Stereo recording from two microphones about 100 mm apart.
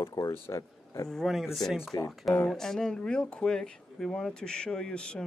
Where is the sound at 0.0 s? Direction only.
35° left (ahead or behind).